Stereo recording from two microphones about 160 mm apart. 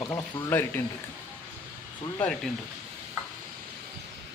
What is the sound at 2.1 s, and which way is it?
Speech, 5° left (ahead or behind).